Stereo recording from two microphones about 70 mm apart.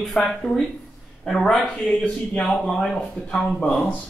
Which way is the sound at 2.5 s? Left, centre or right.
Centre.